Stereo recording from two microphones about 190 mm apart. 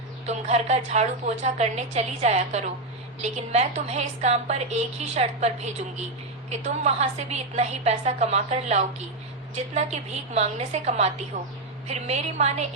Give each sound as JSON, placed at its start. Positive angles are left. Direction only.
{"t": 0.3, "sound": "a woman's voice", "side_deg": -35}